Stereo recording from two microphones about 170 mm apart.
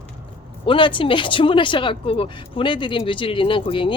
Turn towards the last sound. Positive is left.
turn(degrees=30)  # may be behind; listen again after turning